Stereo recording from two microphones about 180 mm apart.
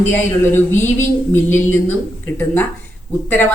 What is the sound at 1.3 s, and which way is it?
Speech, 10° left (ahead or behind).